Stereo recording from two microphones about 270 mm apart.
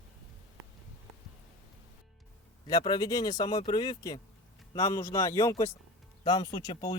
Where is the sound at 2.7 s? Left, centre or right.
Centre.